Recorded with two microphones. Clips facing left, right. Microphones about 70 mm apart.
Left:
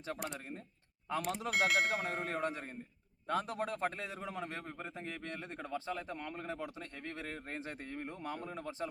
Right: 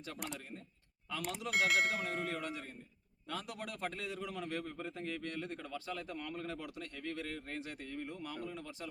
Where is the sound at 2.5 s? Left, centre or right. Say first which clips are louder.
Left 2 dB; left.